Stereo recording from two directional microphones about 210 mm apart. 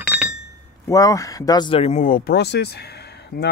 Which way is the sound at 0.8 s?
15° left (ahead or behind).